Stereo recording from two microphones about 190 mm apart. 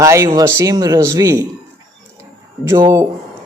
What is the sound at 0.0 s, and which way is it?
A man's voice, 15° right (ahead or behind).